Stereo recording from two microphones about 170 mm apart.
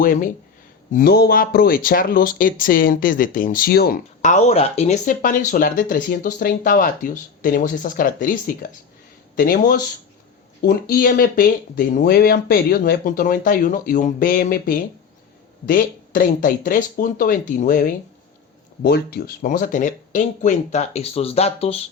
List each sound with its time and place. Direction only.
0.0 s speech: 55° left (ahead or behind)
0.9 s speech: 65° left (ahead or behind); by 17.9 s 50° left (ahead or behind)
18.8 s speech: 65° left (ahead or behind); by 21.8 s 35° left (ahead or behind)